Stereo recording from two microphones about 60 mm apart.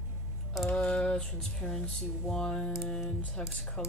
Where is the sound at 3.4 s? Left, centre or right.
Centre.